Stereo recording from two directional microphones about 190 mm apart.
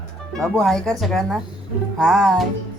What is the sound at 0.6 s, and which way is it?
Speech, 5° left (ahead or behind).